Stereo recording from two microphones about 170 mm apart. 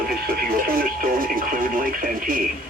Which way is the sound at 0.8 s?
55° right (ahead or behind).